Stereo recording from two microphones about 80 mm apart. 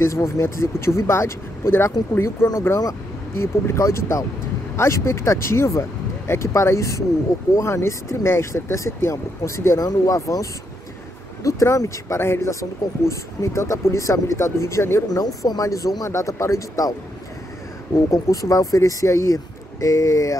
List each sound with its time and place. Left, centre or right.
0.0 s speech: left
9.8 s speech: left
15.0 s speech: left
18.1 s speech: left